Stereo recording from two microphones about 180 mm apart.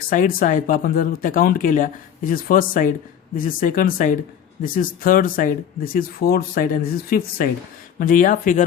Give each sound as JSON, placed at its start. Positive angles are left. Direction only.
{"t": 0.1, "sound": "speech", "side_deg": 50}